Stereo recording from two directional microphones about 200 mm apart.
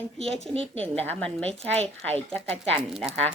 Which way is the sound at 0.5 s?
30° right (ahead or behind).